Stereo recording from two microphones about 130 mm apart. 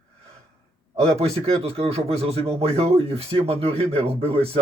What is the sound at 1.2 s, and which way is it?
Speech, 50° right (ahead or behind).